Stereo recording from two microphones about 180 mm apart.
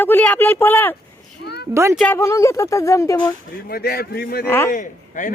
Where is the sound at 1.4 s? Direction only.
65° left (ahead or behind).